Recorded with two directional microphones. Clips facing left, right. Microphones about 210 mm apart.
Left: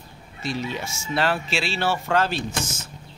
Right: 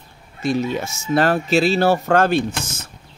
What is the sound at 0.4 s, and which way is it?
Speech, 50° right (ahead or behind).